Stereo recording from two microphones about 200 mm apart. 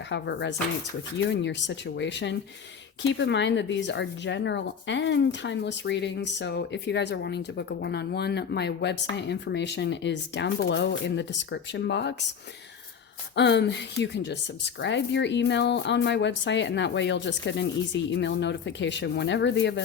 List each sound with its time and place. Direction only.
0.1 s speech: 60° left (ahead or behind)
13.3 s speech: 60° left (ahead or behind)